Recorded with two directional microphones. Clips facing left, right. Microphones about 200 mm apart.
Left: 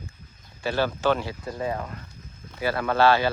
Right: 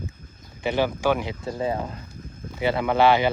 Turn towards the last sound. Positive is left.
turn(degrees=-15)  # may be behind; listen again after turning